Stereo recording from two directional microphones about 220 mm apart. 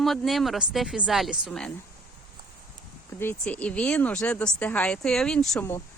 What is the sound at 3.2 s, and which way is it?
Speech, 10° left (ahead or behind).